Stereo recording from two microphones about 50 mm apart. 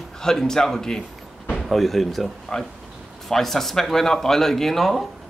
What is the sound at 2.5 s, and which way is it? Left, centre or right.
Speech, centre.